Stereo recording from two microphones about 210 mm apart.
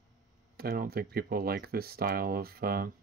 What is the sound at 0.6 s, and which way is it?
Speech, 45° right (ahead or behind).